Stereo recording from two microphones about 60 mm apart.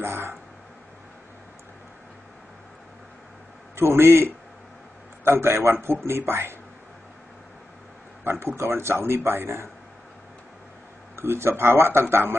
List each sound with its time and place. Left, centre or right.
0.0 s a sound: right
3.7 s speech: right
8.2 s a man's voice: right
11.1 s speech: right